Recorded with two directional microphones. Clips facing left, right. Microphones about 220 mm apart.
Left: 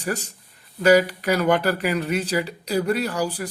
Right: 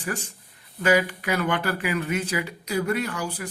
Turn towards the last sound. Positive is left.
turn(degrees=35)  # may be behind; listen again after turning